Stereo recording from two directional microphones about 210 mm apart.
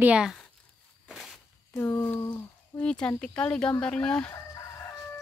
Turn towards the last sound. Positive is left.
turn(degrees=5)  # may be behind; listen again after turning